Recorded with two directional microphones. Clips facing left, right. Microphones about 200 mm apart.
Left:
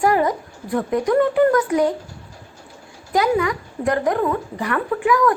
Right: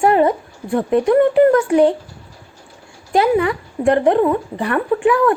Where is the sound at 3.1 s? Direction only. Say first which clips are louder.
Right 3 dB; 30° right (ahead or behind).